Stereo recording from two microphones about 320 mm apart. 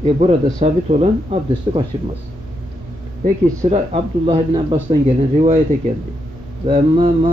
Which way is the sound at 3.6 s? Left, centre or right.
Centre.